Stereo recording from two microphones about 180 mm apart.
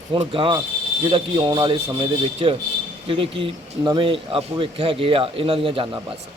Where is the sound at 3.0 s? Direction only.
30° right (ahead or behind).